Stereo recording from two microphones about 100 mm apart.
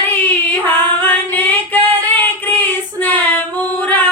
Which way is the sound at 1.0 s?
20° left (ahead or behind).